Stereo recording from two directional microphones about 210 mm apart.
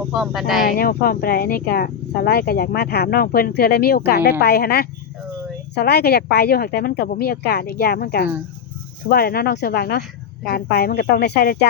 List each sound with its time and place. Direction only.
0.1 s speech: centre (ahead or behind)
0.8 s speech: 45° left (ahead or behind)